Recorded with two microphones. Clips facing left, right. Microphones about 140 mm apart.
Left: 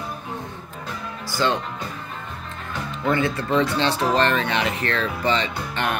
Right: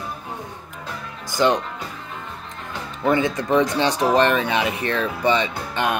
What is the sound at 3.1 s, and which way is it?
Speech, 15° right (ahead or behind).